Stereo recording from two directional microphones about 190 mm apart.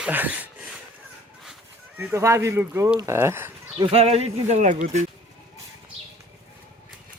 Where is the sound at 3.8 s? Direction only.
30° right (ahead or behind).